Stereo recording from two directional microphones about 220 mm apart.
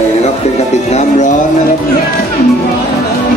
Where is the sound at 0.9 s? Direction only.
30° left (ahead or behind).